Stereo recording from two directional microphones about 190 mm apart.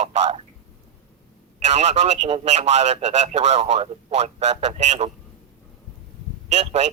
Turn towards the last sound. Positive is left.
turn(degrees=-35)  # may be behind; listen again after turning